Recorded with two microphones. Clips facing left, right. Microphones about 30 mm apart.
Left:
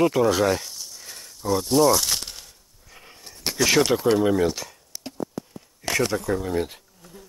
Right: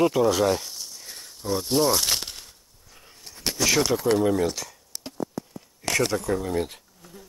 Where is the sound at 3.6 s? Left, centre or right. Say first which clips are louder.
Left 3 dB; centre.